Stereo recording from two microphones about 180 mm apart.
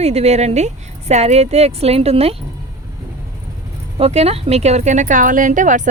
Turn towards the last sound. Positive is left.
turn(degrees=-45)  # may be behind; listen again after turning